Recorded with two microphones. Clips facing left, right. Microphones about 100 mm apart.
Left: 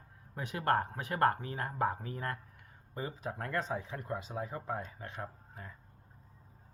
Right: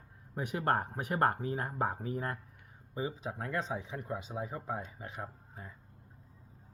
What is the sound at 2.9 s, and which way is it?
Speech, 10° right (ahead or behind).